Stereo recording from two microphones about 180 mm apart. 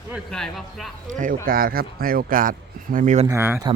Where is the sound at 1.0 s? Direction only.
45° right (ahead or behind).